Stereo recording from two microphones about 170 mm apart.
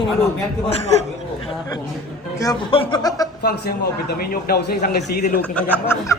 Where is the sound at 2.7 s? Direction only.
30° left (ahead or behind).